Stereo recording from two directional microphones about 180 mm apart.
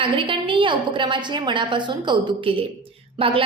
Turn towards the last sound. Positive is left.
turn(degrees=-30)  # may be behind; listen again after turning